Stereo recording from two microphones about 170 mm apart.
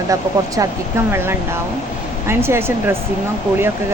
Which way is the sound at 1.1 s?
15° right (ahead or behind).